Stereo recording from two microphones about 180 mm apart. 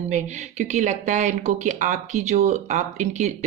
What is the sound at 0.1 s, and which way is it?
A woman's voice, 40° right (ahead or behind).